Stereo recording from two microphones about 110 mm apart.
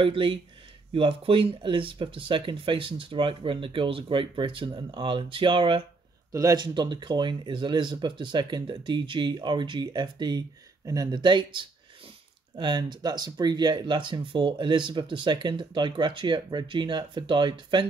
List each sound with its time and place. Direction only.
0.0 s speech: 55° right (ahead or behind)
6.3 s speech: 35° right (ahead or behind)